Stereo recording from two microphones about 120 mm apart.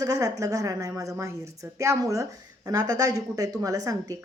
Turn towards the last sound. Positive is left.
turn(degrees=-30)  # may be behind; listen again after turning